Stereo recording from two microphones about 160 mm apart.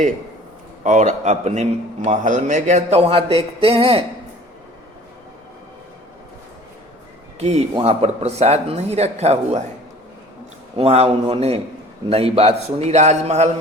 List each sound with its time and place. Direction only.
0.9 s a man's voice: 45° right (ahead or behind)
7.3 s speech: 40° right (ahead or behind)
10.8 s a man's voice: 40° right (ahead or behind)